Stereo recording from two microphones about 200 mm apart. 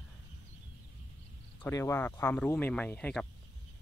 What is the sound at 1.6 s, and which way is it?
Speech, 15° left (ahead or behind).